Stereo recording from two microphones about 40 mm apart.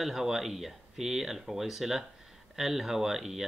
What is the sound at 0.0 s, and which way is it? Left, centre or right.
Speech, centre.